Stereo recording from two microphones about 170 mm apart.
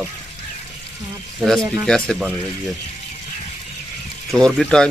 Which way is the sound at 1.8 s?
5° left (ahead or behind).